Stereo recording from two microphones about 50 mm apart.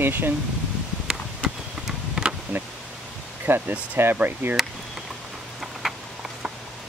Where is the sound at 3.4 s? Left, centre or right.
Right.